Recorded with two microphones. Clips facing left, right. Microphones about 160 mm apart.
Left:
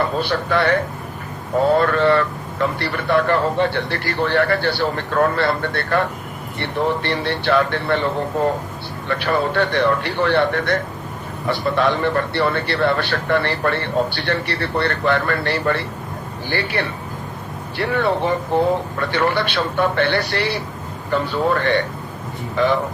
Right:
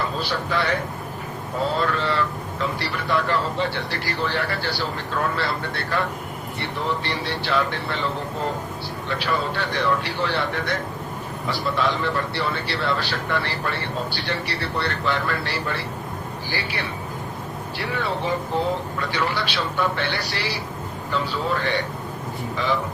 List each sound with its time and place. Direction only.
0.0 s a man's voice: 60° left (ahead or behind)
9.0 s a man's voice: 55° left (ahead or behind)